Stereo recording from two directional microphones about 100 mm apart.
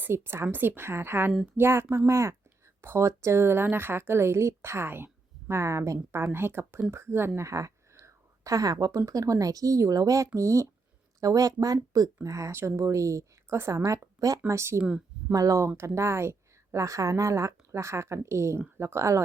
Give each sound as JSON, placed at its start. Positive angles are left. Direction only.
{"t": 0.0, "sound": "a woman's voice", "side_deg": -25}
{"t": 14.8, "sound": "speech", "side_deg": -10}
{"t": 15.3, "sound": "a woman's voice", "side_deg": -35}